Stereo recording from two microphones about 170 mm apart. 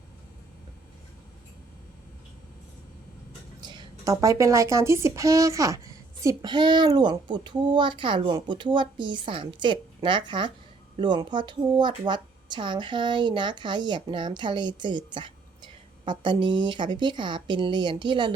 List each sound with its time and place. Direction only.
3.6 s speech: 25° right (ahead or behind)